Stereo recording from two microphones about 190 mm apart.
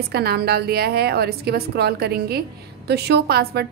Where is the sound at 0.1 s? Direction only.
55° right (ahead or behind).